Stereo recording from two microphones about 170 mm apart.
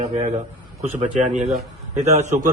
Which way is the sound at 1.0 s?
45° right (ahead or behind).